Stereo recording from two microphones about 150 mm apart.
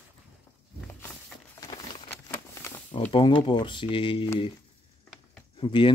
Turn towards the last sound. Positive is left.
turn(degrees=35)  # may be behind; listen again after turning